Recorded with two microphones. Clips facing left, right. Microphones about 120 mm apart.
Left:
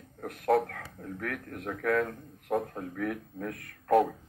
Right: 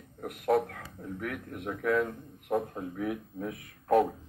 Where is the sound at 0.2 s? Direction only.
5° right (ahead or behind).